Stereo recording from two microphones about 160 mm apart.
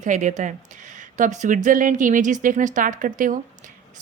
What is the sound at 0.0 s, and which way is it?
A woman's voice, 50° right (ahead or behind).